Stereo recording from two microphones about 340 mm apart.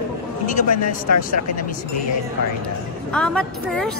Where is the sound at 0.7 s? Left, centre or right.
Left.